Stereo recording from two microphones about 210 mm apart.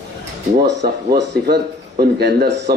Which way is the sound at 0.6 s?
50° right (ahead or behind).